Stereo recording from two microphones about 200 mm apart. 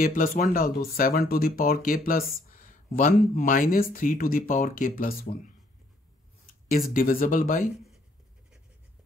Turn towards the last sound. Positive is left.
turn(degrees=45)  # may be behind; listen again after turning